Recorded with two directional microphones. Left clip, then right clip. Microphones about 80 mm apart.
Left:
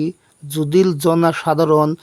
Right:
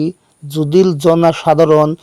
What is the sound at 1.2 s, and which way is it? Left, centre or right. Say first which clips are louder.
Speech: right 5 dB; right.